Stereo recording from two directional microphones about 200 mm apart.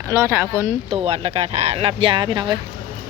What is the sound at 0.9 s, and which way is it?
Speech, 30° right (ahead or behind).